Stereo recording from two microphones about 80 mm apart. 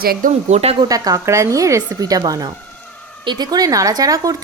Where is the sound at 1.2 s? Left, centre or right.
Right.